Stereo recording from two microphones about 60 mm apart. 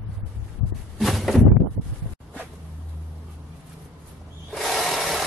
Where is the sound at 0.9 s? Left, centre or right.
Centre.